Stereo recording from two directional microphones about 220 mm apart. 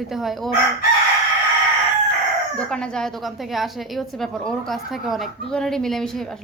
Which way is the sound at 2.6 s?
5° left (ahead or behind).